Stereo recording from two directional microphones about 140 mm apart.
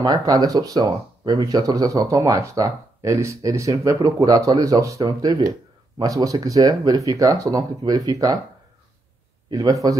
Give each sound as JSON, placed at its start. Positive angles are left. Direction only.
{"t": 0.0, "sound": "speech", "side_deg": -30}
{"t": 9.5, "sound": "speech", "side_deg": -25}